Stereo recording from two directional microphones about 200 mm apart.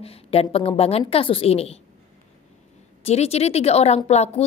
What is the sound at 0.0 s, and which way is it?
A woman's voice, 30° left (ahead or behind).